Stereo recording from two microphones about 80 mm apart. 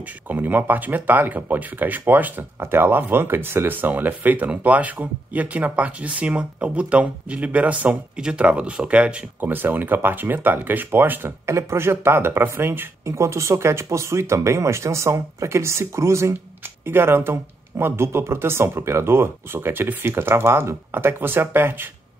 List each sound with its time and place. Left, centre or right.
0.3 s speech: right